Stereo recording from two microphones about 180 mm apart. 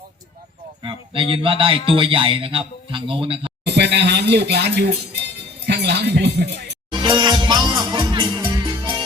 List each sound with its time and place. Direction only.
0.8 s speech: 30° right (ahead or behind)
3.6 s speech: 70° right (ahead or behind)
5.6 s chink: 65° right (ahead or behind)
6.9 s music: 25° right (ahead or behind)